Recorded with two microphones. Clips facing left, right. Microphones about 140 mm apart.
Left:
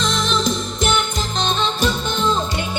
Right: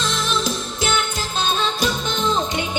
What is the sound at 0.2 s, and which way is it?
Music, 5° right (ahead or behind).